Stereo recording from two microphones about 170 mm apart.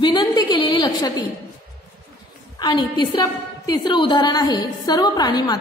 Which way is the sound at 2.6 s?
25° left (ahead or behind).